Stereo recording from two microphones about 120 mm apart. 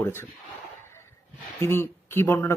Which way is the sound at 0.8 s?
20° left (ahead or behind).